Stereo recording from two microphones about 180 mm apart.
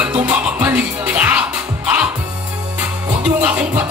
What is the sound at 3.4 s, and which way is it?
Music, 10° right (ahead or behind).